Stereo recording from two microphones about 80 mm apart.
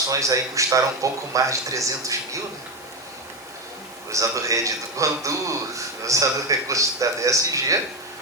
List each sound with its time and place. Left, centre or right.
0.1 s a man's voice: right
4.1 s a man's voice: right